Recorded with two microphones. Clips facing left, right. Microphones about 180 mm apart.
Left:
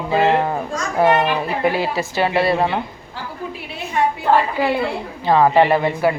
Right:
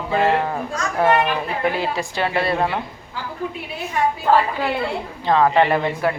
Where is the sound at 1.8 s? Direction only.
5° left (ahead or behind).